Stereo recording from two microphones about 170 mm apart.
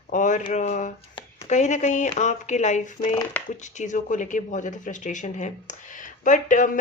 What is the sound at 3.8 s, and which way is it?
A woman's voice, 50° left (ahead or behind).